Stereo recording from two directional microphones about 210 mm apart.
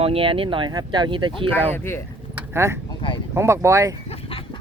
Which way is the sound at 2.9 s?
25° left (ahead or behind).